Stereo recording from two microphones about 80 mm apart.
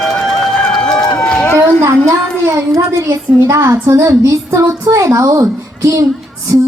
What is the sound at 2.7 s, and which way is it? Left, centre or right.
A woman's voice, right.